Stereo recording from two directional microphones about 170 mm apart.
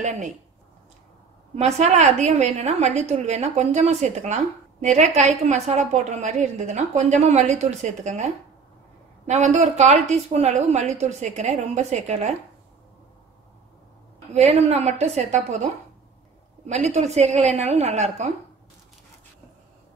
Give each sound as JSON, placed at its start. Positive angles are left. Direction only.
{"t": 0.0, "sound": "a woman's voice", "side_deg": -45}
{"t": 1.6, "sound": "a woman's voice", "side_deg": -45}
{"t": 15.0, "sound": "a woman's voice", "side_deg": -40}
{"t": 16.6, "sound": "a woman's voice", "side_deg": -40}